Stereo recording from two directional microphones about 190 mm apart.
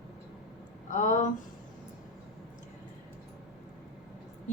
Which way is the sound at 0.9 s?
40° left (ahead or behind).